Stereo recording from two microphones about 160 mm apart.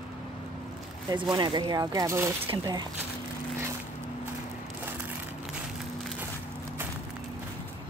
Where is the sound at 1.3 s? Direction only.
30° right (ahead or behind).